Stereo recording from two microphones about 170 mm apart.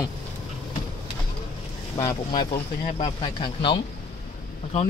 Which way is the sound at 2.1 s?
25° left (ahead or behind).